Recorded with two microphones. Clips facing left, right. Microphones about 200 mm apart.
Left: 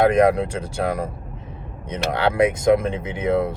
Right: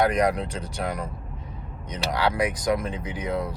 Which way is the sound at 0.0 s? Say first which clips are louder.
Left 6 dB; 25° left (ahead or behind).